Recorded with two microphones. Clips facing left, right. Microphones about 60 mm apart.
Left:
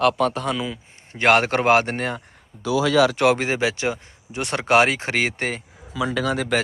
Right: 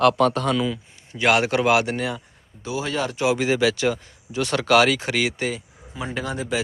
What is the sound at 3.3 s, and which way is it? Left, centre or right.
Speech, left.